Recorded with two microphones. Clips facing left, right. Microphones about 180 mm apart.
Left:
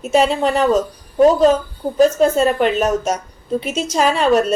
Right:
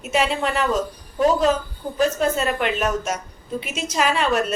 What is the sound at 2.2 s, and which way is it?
A woman's voice, 30° left (ahead or behind).